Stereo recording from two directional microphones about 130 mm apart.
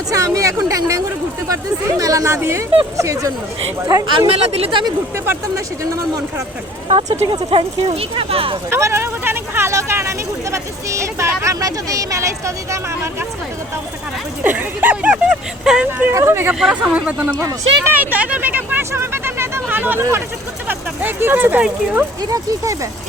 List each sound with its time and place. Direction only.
0.1 s speech: 25° right (ahead or behind)
4.3 s speech: 50° right (ahead or behind)
5.1 s speech: 20° right (ahead or behind)
6.8 s speech: 50° right (ahead or behind)
8.7 s speech: 20° right (ahead or behind)
14.4 s speech: 15° right (ahead or behind)
15.9 s speech: 15° right (ahead or behind)
16.6 s speech: 5° right (ahead or behind)
22.2 s speech: 25° right (ahead or behind)